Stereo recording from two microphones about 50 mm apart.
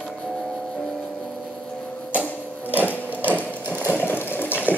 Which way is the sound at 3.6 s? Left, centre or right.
Right.